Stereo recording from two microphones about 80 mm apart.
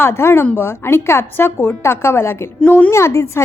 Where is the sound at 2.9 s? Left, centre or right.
Left.